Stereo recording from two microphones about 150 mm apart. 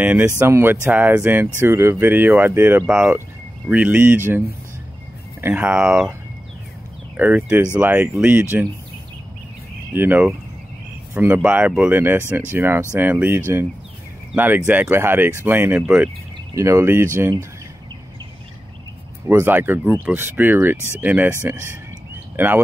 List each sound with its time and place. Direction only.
0.0 s speech: 10° right (ahead or behind)
5.4 s speech: 10° right (ahead or behind)
7.2 s speech: 10° right (ahead or behind)
9.9 s speech: 10° right (ahead or behind)
19.2 s speech: 15° right (ahead or behind)